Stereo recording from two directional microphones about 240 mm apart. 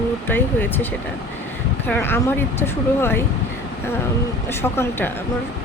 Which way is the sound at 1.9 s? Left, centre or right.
Centre.